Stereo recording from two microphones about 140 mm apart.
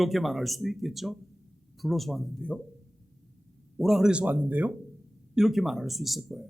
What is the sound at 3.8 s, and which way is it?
Speech, 5° right (ahead or behind).